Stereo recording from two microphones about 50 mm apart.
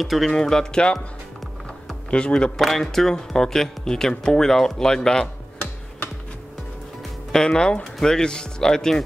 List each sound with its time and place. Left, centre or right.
0.0 s speech: centre
0.3 s speech: centre
2.0 s speech: left
2.5 s speech: centre
7.3 s speech: centre